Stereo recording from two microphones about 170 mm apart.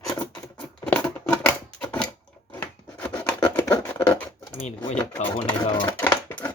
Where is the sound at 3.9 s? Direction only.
10° left (ahead or behind).